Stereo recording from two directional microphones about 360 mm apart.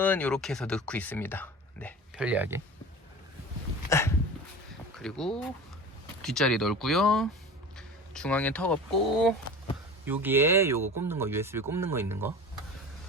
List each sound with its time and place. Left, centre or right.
0.0 s speech: centre
3.8 s dog: centre
4.9 s speech: centre
10.8 s speech: right
11.1 s speech: centre